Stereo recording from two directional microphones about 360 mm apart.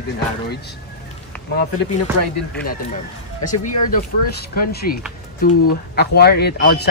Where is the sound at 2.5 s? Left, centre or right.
Left.